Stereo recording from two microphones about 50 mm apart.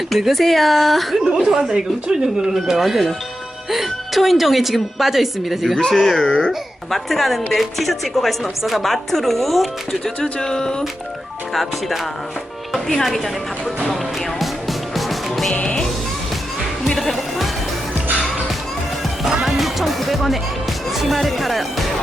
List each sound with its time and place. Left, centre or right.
0.1 s a woman's voice: centre
1.2 s a woman's voice: centre
5.7 s a woman's voice: centre
10.4 s speech: centre
11.5 s a woman's voice: centre
13.8 s music: centre
15.6 s speech: centre
16.8 s music: centre
19.2 s music: centre
20.9 s speech: centre